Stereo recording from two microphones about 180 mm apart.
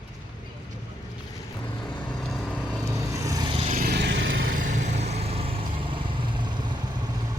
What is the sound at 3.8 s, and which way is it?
Vehicle, 65° right (ahead or behind).